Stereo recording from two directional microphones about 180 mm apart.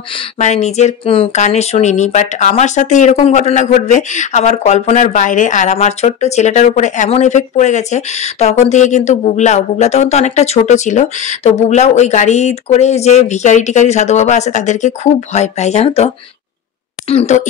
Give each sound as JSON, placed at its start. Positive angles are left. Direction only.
{"t": 0.4, "sound": "speech", "side_deg": 40}
{"t": 17.1, "sound": "speech", "side_deg": 35}